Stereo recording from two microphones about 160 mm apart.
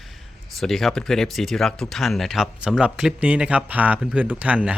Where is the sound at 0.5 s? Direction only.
Centre (ahead or behind).